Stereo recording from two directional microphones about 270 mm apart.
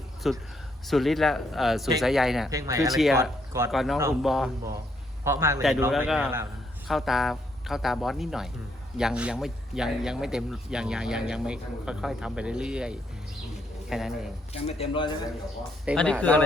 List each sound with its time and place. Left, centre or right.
0.2 s speech: centre
2.5 s a man's voice: centre
2.9 s a man's voice: centre
14.5 s speech: left
15.9 s speech: centre